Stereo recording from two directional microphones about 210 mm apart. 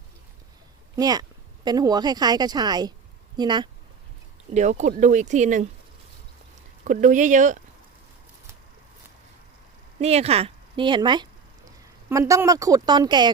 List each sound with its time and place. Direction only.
0.9 s a woman's voice: 20° right (ahead or behind)
4.5 s speech: 35° right (ahead or behind)
6.8 s speech: 35° right (ahead or behind)
10.0 s speech: 30° right (ahead or behind)